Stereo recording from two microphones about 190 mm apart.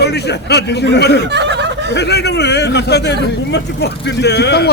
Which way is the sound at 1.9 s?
60° left (ahead or behind).